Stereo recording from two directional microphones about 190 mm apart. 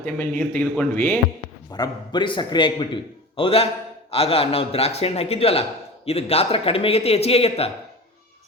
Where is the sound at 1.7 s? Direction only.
25° left (ahead or behind).